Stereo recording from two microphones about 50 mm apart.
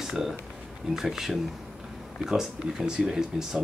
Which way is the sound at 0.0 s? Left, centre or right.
Centre.